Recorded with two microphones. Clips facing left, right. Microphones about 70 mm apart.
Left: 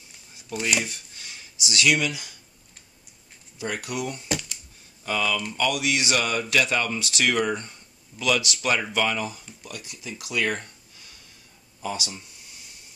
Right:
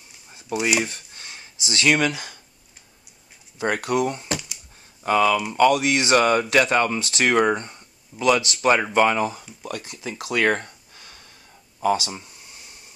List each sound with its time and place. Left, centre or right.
0.8 s a sound: right
2.0 s speech: right
3.5 s speech: right